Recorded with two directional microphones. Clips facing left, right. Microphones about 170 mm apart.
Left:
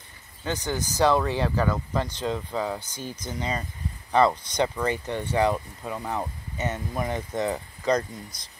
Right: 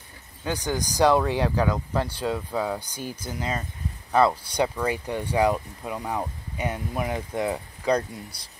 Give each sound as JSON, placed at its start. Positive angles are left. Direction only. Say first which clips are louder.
{"t": 0.4, "sound": "speech", "louder": "right 1 dB", "side_deg": -10}